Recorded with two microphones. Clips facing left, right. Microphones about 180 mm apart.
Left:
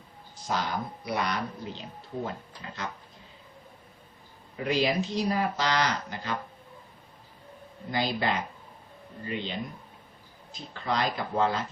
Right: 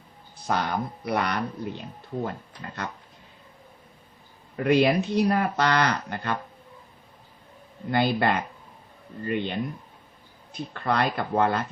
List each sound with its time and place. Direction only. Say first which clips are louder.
0.4 s speech: right 4 dB; 60° right (ahead or behind)
4.5 s speech: right 6 dB; 60° right (ahead or behind)
7.9 s speech: right 5 dB; 60° right (ahead or behind)